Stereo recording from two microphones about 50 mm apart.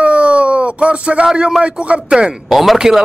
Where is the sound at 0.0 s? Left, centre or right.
Right.